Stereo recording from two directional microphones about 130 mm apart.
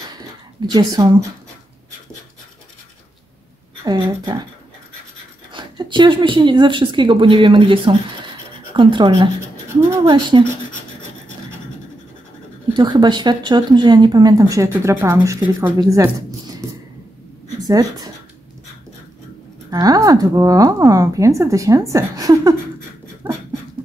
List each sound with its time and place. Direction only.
0.6 s speech: 30° right (ahead or behind)
3.8 s speech: 30° right (ahead or behind)
5.5 s speech: 40° right (ahead or behind)
12.7 s a woman's voice: 35° right (ahead or behind); by 15.7 s 15° right (ahead or behind)
15.9 s a sound: 25° right (ahead or behind)
17.6 s speech: 30° right (ahead or behind)
19.7 s a woman's voice: 30° right (ahead or behind)
23.2 s beatboxing: 15° right (ahead or behind)